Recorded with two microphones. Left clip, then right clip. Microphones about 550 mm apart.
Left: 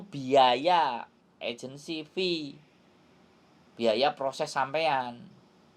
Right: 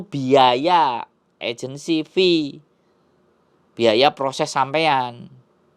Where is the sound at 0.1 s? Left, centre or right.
Right.